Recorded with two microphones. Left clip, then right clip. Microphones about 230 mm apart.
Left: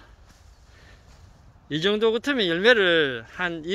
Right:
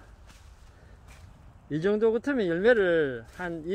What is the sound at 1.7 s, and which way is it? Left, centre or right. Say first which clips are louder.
Speech: left 3 dB; centre.